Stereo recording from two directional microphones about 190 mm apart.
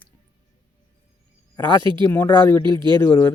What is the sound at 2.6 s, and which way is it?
Speech, 25° right (ahead or behind).